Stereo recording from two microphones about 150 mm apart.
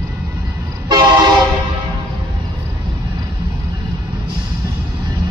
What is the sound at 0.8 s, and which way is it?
Train, 25° right (ahead or behind).